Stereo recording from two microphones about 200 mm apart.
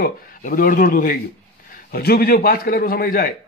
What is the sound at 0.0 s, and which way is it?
A man's voice, 45° left (ahead or behind).